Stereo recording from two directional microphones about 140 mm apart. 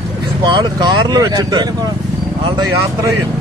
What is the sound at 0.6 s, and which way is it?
Speech, 30° right (ahead or behind).